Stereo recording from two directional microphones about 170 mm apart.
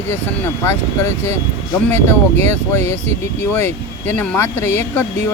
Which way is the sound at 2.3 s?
40° right (ahead or behind).